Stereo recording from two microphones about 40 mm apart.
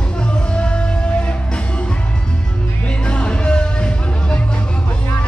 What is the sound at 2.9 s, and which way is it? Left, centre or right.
Music, left.